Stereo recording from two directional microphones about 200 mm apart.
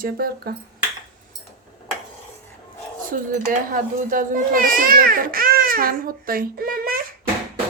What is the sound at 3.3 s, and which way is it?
A woman's voice, 40° right (ahead or behind).